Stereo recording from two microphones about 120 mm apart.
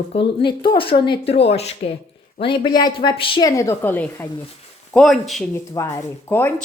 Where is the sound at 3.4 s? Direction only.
25° left (ahead or behind).